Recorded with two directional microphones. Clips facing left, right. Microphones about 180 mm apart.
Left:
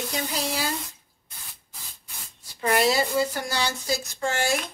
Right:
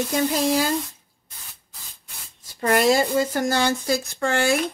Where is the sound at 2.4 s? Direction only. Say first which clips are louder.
Right 3 dB; 45° right (ahead or behind).